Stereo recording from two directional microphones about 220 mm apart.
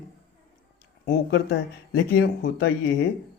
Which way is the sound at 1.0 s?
45° left (ahead or behind).